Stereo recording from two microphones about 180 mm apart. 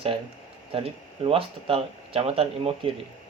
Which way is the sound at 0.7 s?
30° right (ahead or behind).